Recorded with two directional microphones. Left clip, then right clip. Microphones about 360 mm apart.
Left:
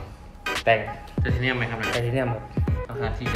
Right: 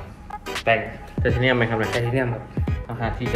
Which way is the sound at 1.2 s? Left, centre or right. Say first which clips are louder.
Right 6 dB; centre.